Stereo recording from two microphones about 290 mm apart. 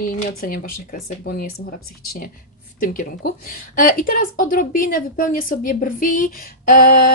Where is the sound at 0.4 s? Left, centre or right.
Left.